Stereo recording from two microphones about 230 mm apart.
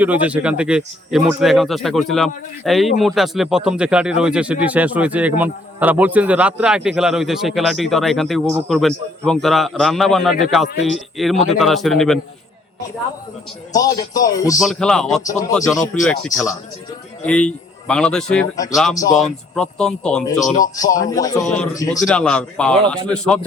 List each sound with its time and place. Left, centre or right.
0.0 s speech: centre
13.7 s speech: centre
14.6 s speech: centre
18.5 s speech: centre
19.1 s speech: centre
20.7 s speech: centre
21.4 s speech: centre